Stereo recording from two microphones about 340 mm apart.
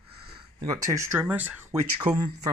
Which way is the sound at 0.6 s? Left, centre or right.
Centre.